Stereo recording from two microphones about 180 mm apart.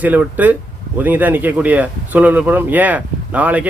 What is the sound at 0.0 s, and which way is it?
Speech, 10° right (ahead or behind).